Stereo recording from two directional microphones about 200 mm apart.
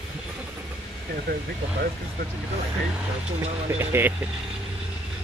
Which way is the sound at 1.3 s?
50° right (ahead or behind).